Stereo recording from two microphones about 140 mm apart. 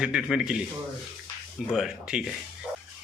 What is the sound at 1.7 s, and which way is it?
Speech, 5° right (ahead or behind).